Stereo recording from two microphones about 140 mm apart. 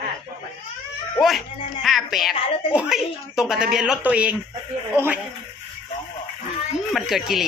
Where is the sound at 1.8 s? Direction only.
Centre (ahead or behind); by 5.2 s 15° right (ahead or behind).